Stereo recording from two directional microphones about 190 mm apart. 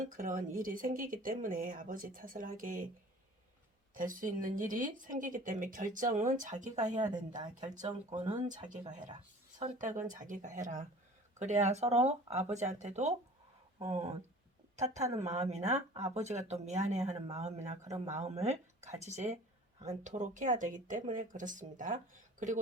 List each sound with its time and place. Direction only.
0.0 s speech: 45° right (ahead or behind)
3.9 s speech: 45° right (ahead or behind)
7.4 s speech: 25° right (ahead or behind)
7.8 s speech: 40° right (ahead or behind)
9.6 s speech: 40° right (ahead or behind)
14.8 s speech: 35° right (ahead or behind)
17.8 s speech: 20° right (ahead or behind)
18.1 s speech: 35° right (ahead or behind)